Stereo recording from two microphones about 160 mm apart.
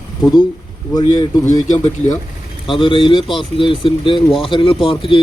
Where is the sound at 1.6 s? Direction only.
50° left (ahead or behind).